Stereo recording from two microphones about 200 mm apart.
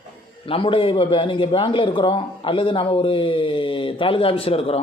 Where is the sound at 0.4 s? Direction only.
25° left (ahead or behind).